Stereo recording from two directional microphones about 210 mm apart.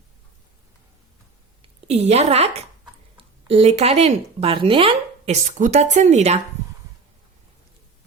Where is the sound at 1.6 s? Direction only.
30° right (ahead or behind).